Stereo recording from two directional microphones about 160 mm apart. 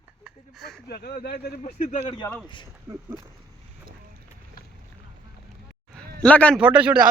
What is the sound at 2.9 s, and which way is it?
Speech, 20° right (ahead or behind).